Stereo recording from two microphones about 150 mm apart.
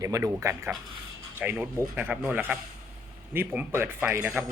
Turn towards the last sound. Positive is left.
turn(degrees=-10)  # may be behind; listen again after turning